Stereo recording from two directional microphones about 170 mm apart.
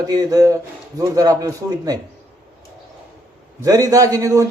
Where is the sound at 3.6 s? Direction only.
20° right (ahead or behind).